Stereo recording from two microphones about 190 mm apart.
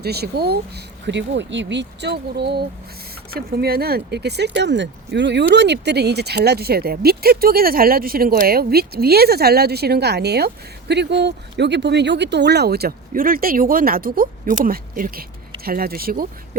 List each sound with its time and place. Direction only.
0.0 s speech: 55° right (ahead or behind)
1.0 s speech: 65° right (ahead or behind); by 16.2 s 50° right (ahead or behind)